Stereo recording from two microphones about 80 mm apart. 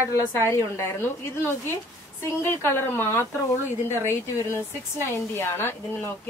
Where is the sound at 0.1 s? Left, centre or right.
Left.